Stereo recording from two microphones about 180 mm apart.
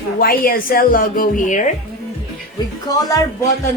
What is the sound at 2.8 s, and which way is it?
Speech, 20° left (ahead or behind).